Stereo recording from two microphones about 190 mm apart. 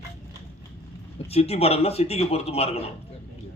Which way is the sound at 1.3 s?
30° left (ahead or behind).